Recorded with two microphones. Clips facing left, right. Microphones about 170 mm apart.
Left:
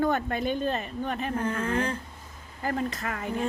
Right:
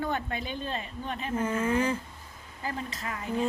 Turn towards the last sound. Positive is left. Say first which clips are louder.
# left 5 dB
turn(degrees=50)  # may be behind; listen again after turning